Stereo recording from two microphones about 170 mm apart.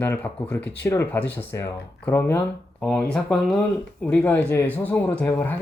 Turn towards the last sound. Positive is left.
turn(degrees=10)  # may be behind; listen again after turning